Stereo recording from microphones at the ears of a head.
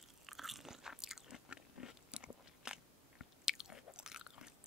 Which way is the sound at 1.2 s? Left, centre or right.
Left.